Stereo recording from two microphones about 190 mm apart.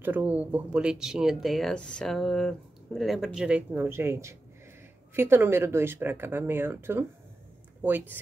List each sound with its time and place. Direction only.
0.0 s speech: 10° right (ahead or behind)